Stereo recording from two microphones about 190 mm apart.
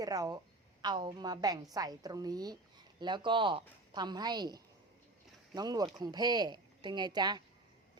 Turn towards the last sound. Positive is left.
turn(degrees=-20)  # may be behind; listen again after turning